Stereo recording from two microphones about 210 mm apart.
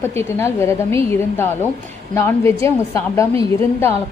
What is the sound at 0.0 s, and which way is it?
A woman's voice, 10° left (ahead or behind).